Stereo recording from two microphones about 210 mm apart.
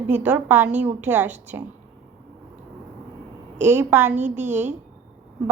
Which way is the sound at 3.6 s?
10° right (ahead or behind).